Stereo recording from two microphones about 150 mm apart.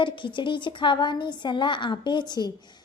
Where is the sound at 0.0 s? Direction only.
35° left (ahead or behind).